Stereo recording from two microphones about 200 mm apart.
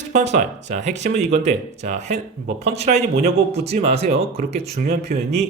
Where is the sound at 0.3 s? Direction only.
35° right (ahead or behind).